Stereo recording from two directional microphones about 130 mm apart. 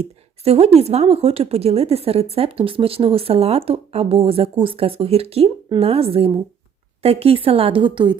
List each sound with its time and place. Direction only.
0.0 s a woman's voice: 50° right (ahead or behind)